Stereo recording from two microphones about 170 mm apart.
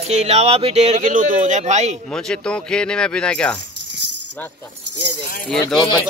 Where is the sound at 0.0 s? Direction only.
40° right (ahead or behind).